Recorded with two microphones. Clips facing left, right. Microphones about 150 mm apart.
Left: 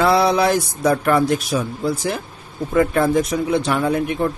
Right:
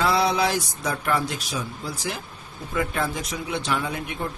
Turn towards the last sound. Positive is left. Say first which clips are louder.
# left 10 dB
turn(degrees=50)  # may be behind; listen again after turning